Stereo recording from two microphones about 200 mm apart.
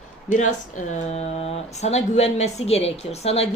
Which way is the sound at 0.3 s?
40° left (ahead or behind).